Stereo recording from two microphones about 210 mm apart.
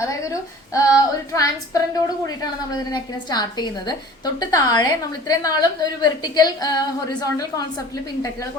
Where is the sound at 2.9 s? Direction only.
20° left (ahead or behind).